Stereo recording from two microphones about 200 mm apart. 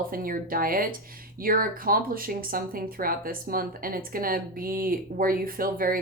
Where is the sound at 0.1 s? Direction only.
45° right (ahead or behind).